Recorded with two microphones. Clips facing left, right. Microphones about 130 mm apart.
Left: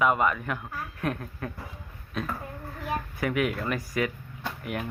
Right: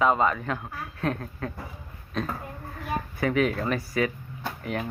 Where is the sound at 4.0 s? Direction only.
25° right (ahead or behind).